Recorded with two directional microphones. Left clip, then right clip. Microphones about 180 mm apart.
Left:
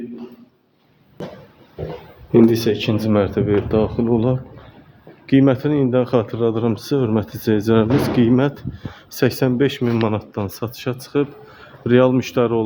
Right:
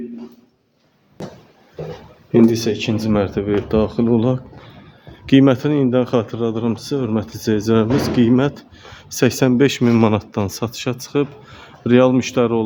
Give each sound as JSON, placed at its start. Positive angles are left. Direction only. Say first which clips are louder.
{"t": 2.3, "sound": "speech", "louder": "left 1 dB", "side_deg": 0}
{"t": 5.2, "sound": "speech", "louder": "right 2 dB", "side_deg": -35}